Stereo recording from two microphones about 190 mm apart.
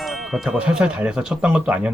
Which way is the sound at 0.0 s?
Centre (ahead or behind).